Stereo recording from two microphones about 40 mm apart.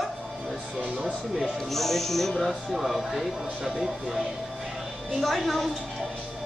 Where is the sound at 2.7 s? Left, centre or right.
Centre.